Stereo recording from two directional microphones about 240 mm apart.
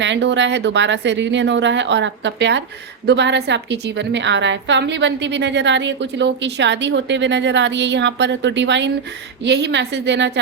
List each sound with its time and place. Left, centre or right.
0.0 s a woman's voice: right